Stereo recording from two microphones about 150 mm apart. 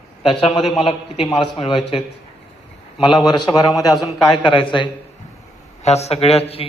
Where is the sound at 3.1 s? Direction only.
30° left (ahead or behind).